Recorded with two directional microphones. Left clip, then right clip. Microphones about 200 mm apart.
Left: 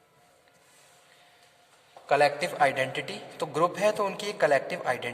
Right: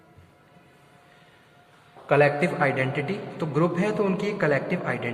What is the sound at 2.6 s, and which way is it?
A man's voice, 45° left (ahead or behind).